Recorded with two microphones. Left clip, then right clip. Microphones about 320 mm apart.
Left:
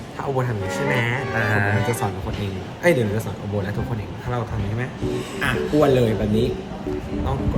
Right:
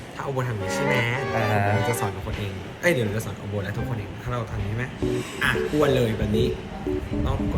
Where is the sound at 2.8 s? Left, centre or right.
Centre.